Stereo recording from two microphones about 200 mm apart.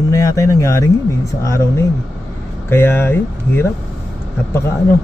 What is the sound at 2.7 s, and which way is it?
Speech, 10° left (ahead or behind).